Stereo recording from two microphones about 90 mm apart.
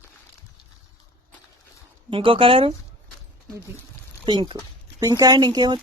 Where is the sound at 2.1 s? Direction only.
80° right.